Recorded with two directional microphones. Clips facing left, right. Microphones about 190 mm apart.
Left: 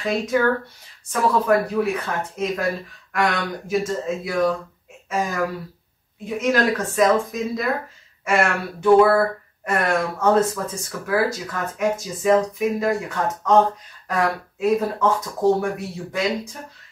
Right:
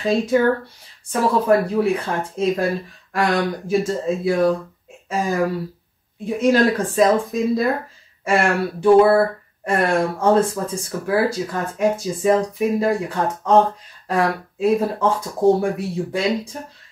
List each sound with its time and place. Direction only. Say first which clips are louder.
0.0 s speech: right 4 dB; 30° right (ahead or behind)
1.5 s speech: right 3 dB; 30° right (ahead or behind)